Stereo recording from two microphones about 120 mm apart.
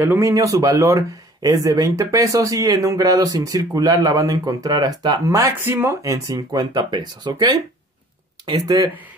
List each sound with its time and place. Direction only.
0.0 s speech: 15° right (ahead or behind)
0.3 s speech: 30° right (ahead or behind)